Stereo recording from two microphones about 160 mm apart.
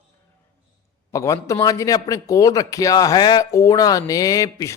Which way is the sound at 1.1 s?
20° left (ahead or behind).